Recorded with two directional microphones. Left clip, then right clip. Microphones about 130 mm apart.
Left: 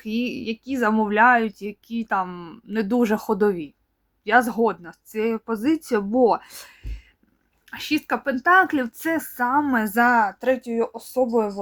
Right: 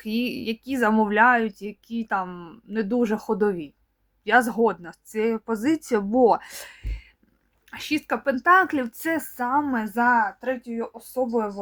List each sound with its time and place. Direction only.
0.0 s speech: centre (ahead or behind)
9.8 s speech: 60° left (ahead or behind)
10.9 s speech: 40° left (ahead or behind)